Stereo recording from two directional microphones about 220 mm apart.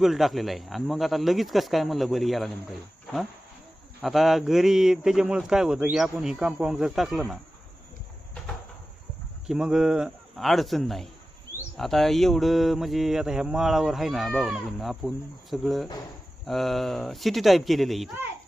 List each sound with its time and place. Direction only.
0.0 s speech: centre (ahead or behind)
4.0 s speech: centre (ahead or behind)
9.5 s speech: 5° right (ahead or behind)